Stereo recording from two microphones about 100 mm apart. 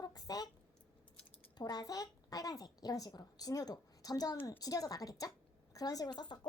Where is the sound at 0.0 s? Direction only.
40° left (ahead or behind).